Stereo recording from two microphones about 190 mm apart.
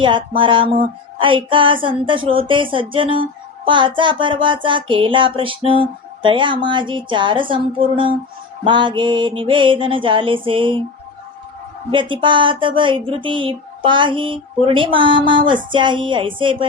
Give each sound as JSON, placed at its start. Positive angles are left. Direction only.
{"t": 0.0, "sound": "speech", "side_deg": -25}
{"t": 11.9, "sound": "speech", "side_deg": -25}